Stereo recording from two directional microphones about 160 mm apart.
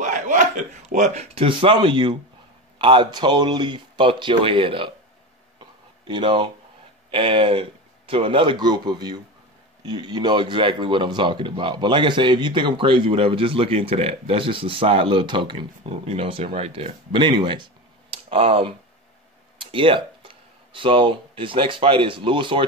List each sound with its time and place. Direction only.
0.0 s a man's voice: 50° right (ahead or behind); by 4.9 s 35° right (ahead or behind)
6.0 s a man's voice: 30° right (ahead or behind)
18.1 s a sound: 35° right (ahead or behind)
19.6 s speech: 35° right (ahead or behind)